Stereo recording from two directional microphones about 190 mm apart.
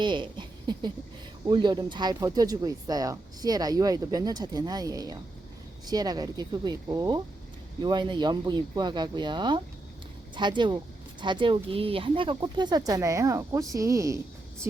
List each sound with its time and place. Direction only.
0.0 s speech: 25° right (ahead or behind)